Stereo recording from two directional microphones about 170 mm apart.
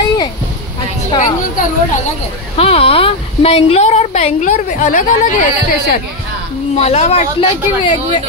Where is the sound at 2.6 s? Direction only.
35° left (ahead or behind).